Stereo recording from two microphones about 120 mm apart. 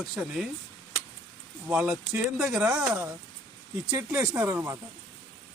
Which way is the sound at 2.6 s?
25° right (ahead or behind).